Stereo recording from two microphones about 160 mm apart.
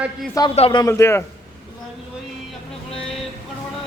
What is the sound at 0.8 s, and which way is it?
Speech, 20° left (ahead or behind).